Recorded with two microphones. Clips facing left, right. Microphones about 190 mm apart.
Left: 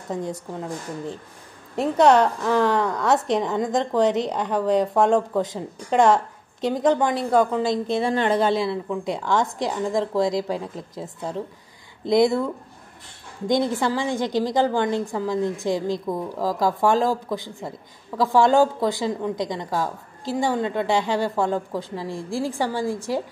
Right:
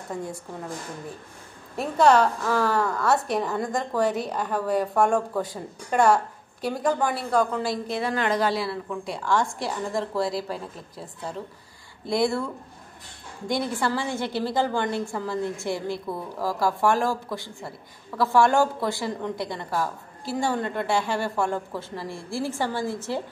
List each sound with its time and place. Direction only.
0.1 s a woman's voice: 20° left (ahead or behind)
1.8 s a woman's voice: 20° left (ahead or behind)
12.1 s a woman's voice: 20° left (ahead or behind)
13.5 s a woman's voice: 20° left (ahead or behind)